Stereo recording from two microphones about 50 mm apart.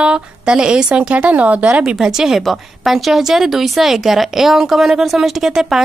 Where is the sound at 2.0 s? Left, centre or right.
Centre.